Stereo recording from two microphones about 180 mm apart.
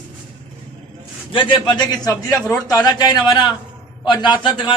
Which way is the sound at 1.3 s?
25° left (ahead or behind).